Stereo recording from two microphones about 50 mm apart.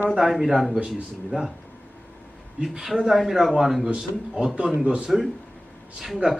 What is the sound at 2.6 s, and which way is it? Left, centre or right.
Speech, centre.